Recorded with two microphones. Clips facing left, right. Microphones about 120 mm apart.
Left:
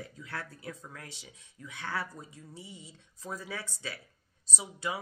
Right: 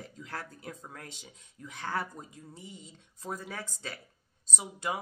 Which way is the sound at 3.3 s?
45° right (ahead or behind).